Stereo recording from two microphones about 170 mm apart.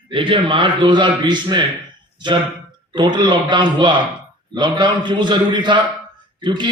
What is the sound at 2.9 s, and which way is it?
A man's voice, 25° right (ahead or behind).